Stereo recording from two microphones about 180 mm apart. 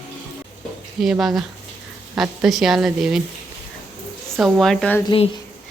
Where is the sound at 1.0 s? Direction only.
Centre (ahead or behind).